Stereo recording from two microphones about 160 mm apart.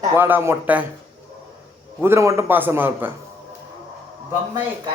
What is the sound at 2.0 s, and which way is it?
A man's voice, 15° right (ahead or behind).